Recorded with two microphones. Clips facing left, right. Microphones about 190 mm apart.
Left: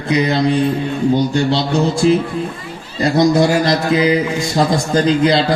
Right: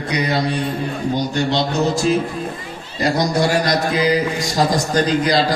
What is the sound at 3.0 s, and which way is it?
A man's voice, 25° left (ahead or behind).